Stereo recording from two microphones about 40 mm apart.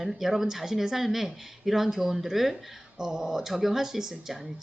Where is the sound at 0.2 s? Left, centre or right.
Centre.